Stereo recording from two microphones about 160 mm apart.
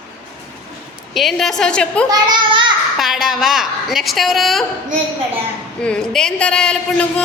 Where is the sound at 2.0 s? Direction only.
25° right (ahead or behind).